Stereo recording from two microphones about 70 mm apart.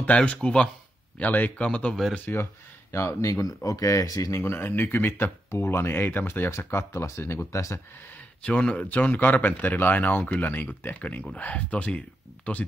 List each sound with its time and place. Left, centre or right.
0.0 s speech: centre
2.9 s speech: left
4.3 s speech: left
8.4 s speech: centre